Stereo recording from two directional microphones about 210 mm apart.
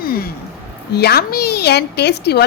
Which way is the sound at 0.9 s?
50° left (ahead or behind).